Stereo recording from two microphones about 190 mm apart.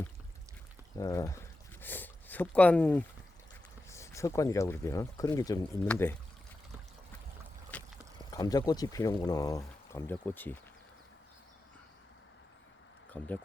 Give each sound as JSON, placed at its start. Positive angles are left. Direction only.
{"t": 0.9, "sound": "speech", "side_deg": 15}
{"t": 7.7, "sound": "a sound", "side_deg": 5}
{"t": 8.3, "sound": "speech", "side_deg": 20}
{"t": 13.1, "sound": "speech", "side_deg": 10}